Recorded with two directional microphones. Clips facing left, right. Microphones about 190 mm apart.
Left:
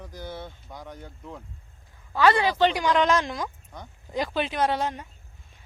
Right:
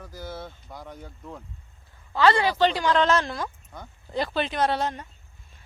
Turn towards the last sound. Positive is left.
turn(degrees=10)  # may be behind; listen again after turning